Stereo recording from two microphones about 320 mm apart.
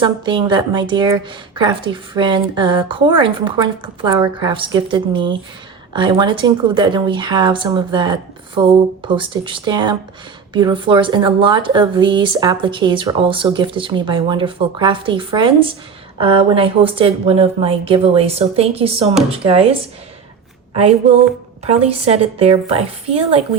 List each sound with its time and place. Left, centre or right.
0.0 s speech: centre
20.7 s a woman's voice: centre